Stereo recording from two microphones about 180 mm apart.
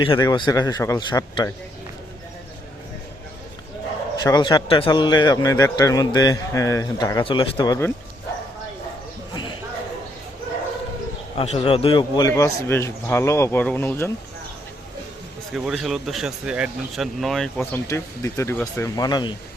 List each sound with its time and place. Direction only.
0.0 s a man's voice: 25° left (ahead or behind)
4.2 s a man's voice: 20° left (ahead or behind)
11.3 s speech: 35° left (ahead or behind)
12.3 s speech: 15° left (ahead or behind)
15.5 s speech: centre (ahead or behind)
17.6 s speech: 15° left (ahead or behind)